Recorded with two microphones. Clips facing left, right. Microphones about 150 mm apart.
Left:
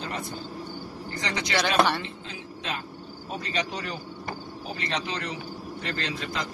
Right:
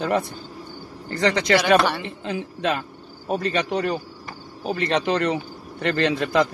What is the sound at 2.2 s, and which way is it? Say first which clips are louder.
Speech: right 11 dB; 60° right (ahead or behind).